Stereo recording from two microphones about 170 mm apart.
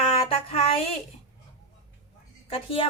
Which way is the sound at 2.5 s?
30° left (ahead or behind).